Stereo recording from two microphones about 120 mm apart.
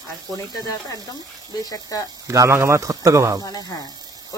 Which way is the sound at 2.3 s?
25° right (ahead or behind).